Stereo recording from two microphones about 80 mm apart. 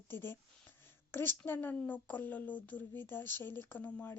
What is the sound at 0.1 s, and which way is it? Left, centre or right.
A woman's voice, left.